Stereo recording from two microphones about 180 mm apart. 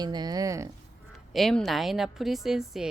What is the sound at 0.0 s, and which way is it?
Speech, 25° right (ahead or behind).